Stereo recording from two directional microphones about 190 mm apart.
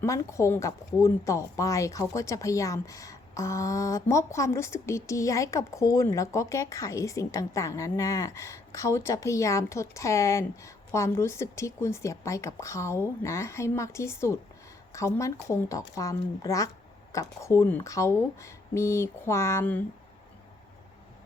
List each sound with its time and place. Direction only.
0.0 s speech: 15° left (ahead or behind)